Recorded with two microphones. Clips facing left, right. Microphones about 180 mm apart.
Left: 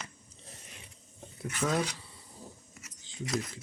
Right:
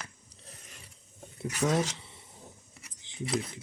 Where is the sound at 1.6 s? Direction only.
20° right (ahead or behind).